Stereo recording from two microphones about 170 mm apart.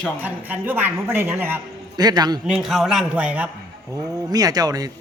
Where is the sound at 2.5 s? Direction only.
Centre (ahead or behind).